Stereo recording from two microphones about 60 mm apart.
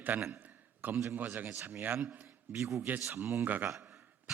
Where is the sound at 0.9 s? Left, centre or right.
Right.